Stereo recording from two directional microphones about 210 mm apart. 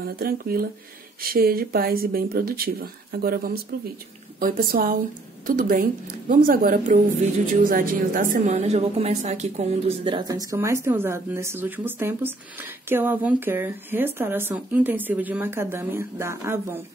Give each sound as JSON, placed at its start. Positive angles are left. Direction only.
{"t": 0.0, "sound": "a woman's voice", "side_deg": -45}